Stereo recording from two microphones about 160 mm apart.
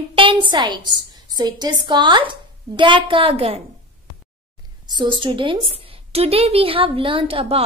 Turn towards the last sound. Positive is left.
turn(degrees=-35)  # may be behind; listen again after turning